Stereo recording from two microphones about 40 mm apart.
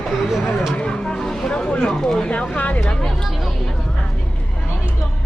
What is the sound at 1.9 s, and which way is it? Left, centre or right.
Speech, centre.